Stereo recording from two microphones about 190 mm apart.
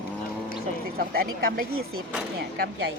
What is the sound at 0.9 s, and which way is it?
Speech, 50° right (ahead or behind).